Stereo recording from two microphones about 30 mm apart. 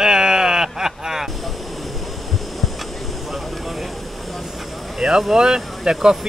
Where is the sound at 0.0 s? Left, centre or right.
Right.